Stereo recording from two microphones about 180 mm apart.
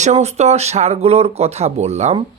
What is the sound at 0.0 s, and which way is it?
Speech, 40° right (ahead or behind).